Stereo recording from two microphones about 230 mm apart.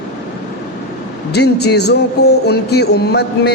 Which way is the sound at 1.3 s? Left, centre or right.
Left.